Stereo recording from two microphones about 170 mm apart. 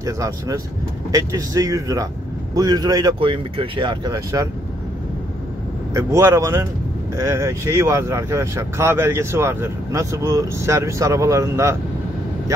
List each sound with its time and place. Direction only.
0.0 s speech: 20° right (ahead or behind)
5.9 s speech: 15° right (ahead or behind)